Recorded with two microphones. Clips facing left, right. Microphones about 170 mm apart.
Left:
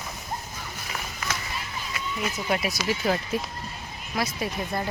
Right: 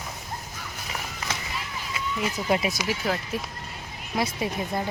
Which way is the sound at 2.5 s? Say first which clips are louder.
Right 3 dB; 20° right (ahead or behind).